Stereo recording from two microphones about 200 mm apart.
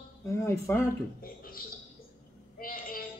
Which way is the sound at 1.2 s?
45° left (ahead or behind).